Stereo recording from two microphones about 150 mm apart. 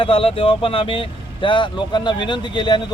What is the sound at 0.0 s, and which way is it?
Speech, 35° left (ahead or behind).